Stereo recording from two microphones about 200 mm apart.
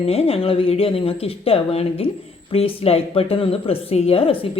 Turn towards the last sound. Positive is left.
turn(degrees=25)  # may be behind; listen again after turning